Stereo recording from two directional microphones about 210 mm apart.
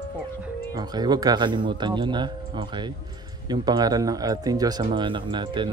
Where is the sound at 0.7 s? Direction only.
20° right (ahead or behind).